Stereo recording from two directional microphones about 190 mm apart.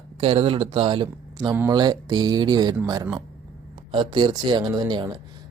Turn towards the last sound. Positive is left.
turn(degrees=-20)  # may be behind; listen again after turning